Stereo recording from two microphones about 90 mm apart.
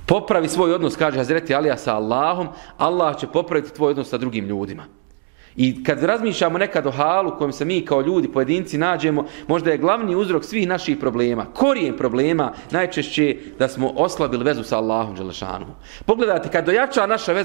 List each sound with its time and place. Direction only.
0.0 s a man's voice: 15° right (ahead or behind)